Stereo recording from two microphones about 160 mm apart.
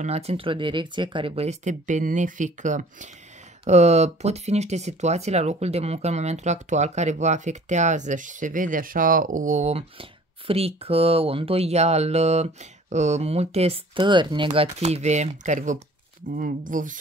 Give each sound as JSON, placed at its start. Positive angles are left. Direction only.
{"t": 0.0, "sound": "speech", "side_deg": -40}